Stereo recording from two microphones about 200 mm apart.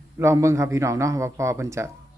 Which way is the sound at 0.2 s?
15° right (ahead or behind).